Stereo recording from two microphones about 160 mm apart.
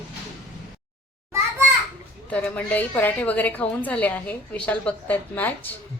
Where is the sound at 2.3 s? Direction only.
10° left (ahead or behind).